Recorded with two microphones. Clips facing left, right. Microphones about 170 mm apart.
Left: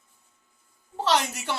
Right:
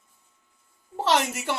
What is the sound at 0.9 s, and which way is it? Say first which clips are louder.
Speech: right 1 dB; 20° right (ahead or behind).